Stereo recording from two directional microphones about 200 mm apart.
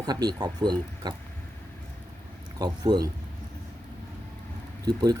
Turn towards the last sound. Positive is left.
turn(degrees=-20)  # may be behind; listen again after turning